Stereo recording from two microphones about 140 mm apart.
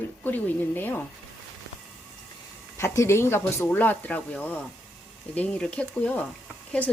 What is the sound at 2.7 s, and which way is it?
Speech, 20° left (ahead or behind).